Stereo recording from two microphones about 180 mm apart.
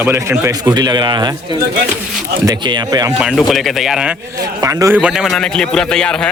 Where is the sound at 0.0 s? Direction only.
15° right (ahead or behind).